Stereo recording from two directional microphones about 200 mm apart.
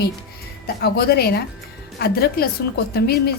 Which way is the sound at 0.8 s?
50° left (ahead or behind).